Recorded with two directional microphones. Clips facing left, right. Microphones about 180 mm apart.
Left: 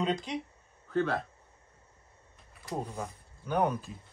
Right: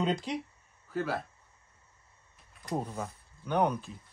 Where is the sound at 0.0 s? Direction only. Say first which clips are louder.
Right 1 dB; 5° right (ahead or behind).